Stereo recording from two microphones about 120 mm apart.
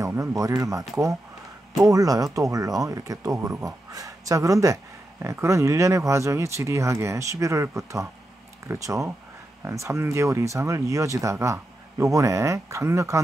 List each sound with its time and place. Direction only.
0.0 s speech: 25° right (ahead or behind)